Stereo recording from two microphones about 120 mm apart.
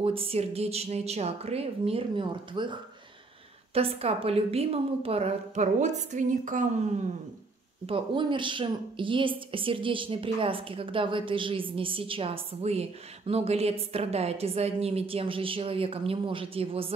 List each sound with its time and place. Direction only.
0.0 s a woman's voice: 50° right (ahead or behind)
3.7 s a woman's voice: 55° right (ahead or behind); by 6.8 s 90° right
7.8 s a woman's voice: 45° right (ahead or behind)